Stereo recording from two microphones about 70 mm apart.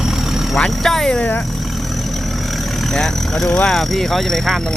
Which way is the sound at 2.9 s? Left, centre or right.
Centre.